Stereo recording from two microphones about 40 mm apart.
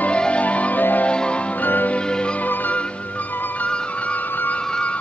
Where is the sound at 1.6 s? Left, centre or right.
Left.